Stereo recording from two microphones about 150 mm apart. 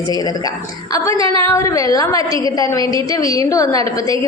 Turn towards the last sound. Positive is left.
turn(degrees=25)  # may be behind; listen again after turning